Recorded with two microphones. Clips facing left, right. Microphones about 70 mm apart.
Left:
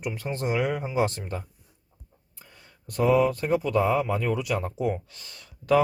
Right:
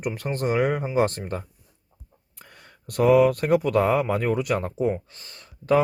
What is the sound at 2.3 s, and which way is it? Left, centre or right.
Speech, right.